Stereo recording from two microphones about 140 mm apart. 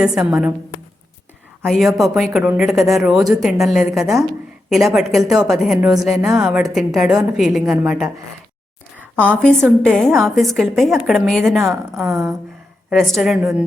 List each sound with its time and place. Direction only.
0.0 s a woman's voice: 5° right (ahead or behind)
1.6 s a woman's voice: centre (ahead or behind)
9.1 s a woman's voice: 10° left (ahead or behind)
11.6 s speech: 15° right (ahead or behind)
12.9 s a woman's voice: centre (ahead or behind)